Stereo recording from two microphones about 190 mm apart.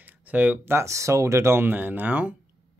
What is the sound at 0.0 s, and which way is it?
Speech, 10° right (ahead or behind).